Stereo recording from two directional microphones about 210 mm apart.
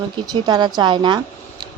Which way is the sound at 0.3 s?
20° right (ahead or behind).